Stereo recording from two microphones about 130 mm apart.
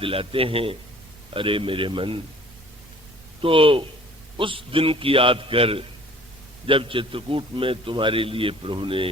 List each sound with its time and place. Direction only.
0.0 s a man's voice: 45° right (ahead or behind)
3.4 s a man's voice: 45° right (ahead or behind)